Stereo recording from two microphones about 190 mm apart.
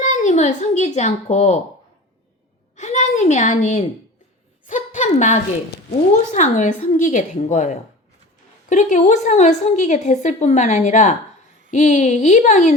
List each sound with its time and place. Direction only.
0.0 s speech: 40° left (ahead or behind)
2.7 s a woman's voice: 40° left (ahead or behind)
4.6 s a sound: 40° left (ahead or behind)
6.3 s a woman's voice: 40° left (ahead or behind)